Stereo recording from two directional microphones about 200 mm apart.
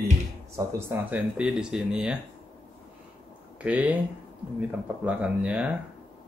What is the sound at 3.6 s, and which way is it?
Speech, 5° right (ahead or behind).